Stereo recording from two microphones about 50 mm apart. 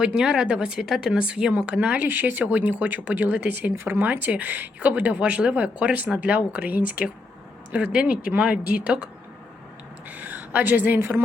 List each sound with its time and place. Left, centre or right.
0.0 s speech: centre
0.8 s speech: centre; by 2.0 s right
2.0 s speech: right
2.4 s speech: right
10.1 s a woman's voice: right